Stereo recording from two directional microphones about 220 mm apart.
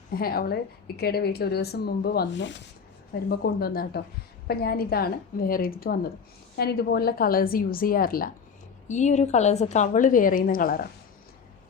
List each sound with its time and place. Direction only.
0.2 s a woman's voice: 45° left (ahead or behind)